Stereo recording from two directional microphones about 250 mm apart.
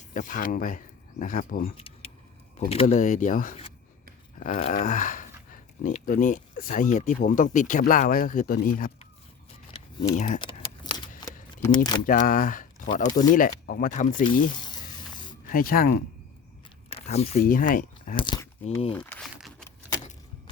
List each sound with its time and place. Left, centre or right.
0.1 s speech: left
1.7 s keys jangling: left
2.6 s speech: left
10.2 s a sound: left
11.6 s speech: centre
12.0 s speech: left
12.9 s speech: centre
13.3 s speech: left
14.5 s snake: centre
15.4 s speech: left
16.9 s speech: left
18.2 s speech: centre
18.9 s crumpling: centre